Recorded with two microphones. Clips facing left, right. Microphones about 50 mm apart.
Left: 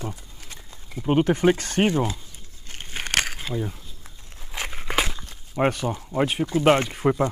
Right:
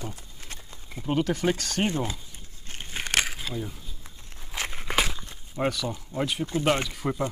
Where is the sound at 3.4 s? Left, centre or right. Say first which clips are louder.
Left 4 dB; left.